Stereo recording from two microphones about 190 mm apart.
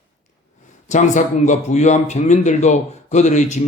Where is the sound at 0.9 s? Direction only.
40° left (ahead or behind).